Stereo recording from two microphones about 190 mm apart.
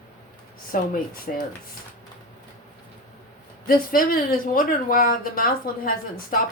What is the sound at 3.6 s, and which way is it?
Speech, 50° left (ahead or behind).